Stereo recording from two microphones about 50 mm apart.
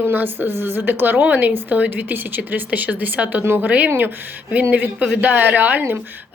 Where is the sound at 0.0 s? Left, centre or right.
Right.